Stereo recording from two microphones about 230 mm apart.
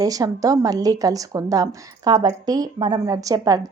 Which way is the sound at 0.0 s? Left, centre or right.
Centre.